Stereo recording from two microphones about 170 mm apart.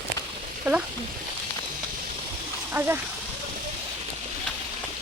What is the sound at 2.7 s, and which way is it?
Speech, 15° right (ahead or behind).